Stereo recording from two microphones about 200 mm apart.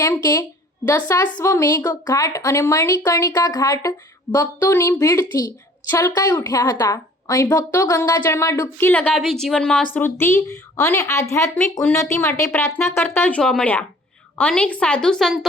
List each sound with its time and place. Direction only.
0.0 s a woman's voice: 15° left (ahead or behind)